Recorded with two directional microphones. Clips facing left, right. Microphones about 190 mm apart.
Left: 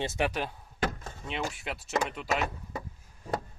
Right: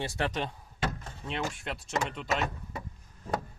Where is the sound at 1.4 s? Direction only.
5° left (ahead or behind).